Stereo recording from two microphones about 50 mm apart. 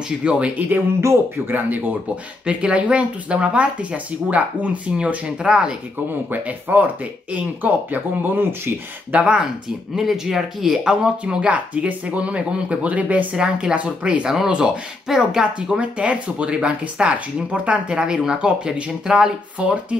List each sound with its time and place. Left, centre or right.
0.2 s speech: right
1.5 s speech: right
2.4 s speech: right
6.3 s speech: right
9.2 s speech: centre